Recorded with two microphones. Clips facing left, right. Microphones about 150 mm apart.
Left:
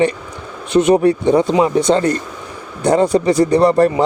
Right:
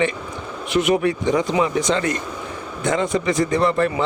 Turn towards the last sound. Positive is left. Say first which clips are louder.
# left 7 dB
turn(degrees=40)  # may be behind; listen again after turning